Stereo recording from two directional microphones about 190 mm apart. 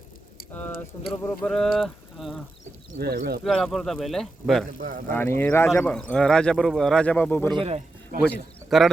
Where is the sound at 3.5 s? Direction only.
Centre (ahead or behind).